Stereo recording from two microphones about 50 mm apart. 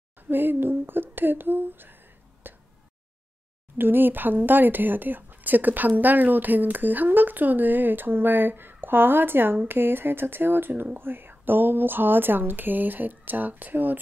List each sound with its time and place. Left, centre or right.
0.3 s speech: right
2.4 s a sound: right
3.7 s speech: right